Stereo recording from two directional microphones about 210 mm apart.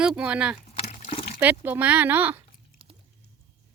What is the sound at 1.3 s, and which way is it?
Speech, 10° right (ahead or behind).